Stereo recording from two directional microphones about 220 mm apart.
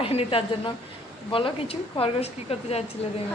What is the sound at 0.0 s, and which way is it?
A woman's voice, 25° left (ahead or behind).